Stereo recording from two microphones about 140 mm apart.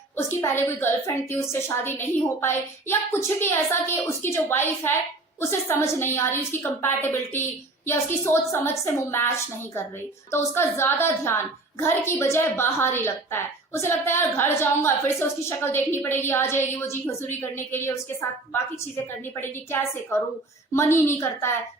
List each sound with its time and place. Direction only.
0.2 s a woman's voice: 15° left (ahead or behind)
19.2 s a woman's voice: 15° left (ahead or behind)